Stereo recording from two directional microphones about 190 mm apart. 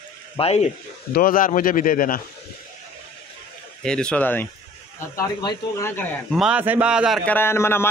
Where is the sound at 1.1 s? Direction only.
50° left (ahead or behind).